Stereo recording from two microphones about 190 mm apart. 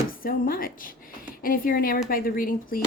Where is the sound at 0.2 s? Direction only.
50° left (ahead or behind).